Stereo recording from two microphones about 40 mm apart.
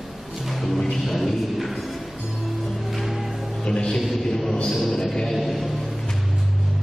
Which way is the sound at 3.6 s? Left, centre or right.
Left.